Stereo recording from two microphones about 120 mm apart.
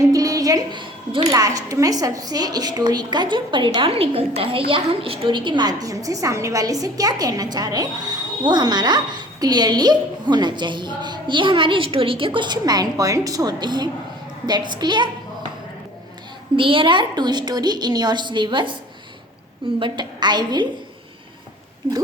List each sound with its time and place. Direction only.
0.1 s a sound: 30° right (ahead or behind)
1.3 s a woman's voice: 30° right (ahead or behind)
16.6 s a woman's voice: 45° right (ahead or behind)
19.8 s a woman's voice: 40° right (ahead or behind)